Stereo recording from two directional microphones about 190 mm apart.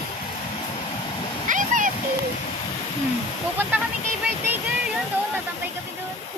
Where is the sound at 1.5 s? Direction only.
45° right (ahead or behind).